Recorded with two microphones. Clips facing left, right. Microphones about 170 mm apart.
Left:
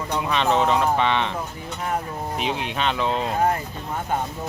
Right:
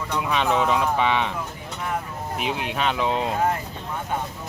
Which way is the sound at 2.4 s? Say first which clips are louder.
Right 1 dB; 5° right (ahead or behind).